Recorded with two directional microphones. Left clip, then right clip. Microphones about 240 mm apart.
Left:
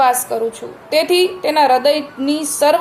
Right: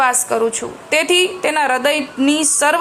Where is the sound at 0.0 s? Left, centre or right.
Centre.